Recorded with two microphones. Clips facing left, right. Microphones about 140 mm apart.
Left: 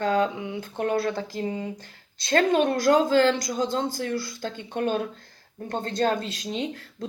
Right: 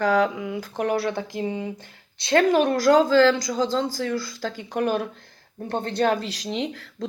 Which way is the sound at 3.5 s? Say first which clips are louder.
Right 2 dB; 90° right.